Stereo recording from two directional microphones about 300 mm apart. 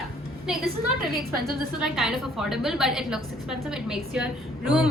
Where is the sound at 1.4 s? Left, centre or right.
Centre.